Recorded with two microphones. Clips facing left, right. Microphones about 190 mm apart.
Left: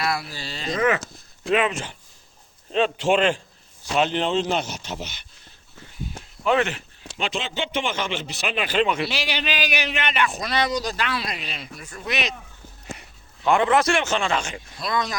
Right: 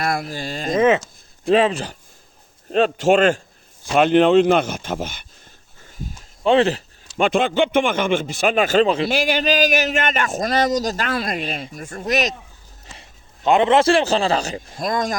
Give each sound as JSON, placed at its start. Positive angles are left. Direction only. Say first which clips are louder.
{"t": 0.0, "sound": "speech", "louder": "right 4 dB", "side_deg": -50}
{"t": 0.8, "sound": "speech", "louder": "right 6 dB", "side_deg": -25}
{"t": 1.5, "sound": "speech", "louder": "right 6 dB", "side_deg": -35}
{"t": 3.9, "sound": "speech", "louder": "right 9 dB", "side_deg": -55}
{"t": 6.4, "sound": "speech", "louder": "right 6 dB", "side_deg": -30}
{"t": 7.2, "sound": "speech", "louder": "right 11 dB", "side_deg": -55}
{"t": 13.0, "sound": "a man's voice", "louder": "right 3 dB", "side_deg": -20}